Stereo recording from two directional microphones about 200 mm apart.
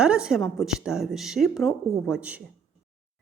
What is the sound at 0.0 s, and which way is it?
Speech, 5° right (ahead or behind).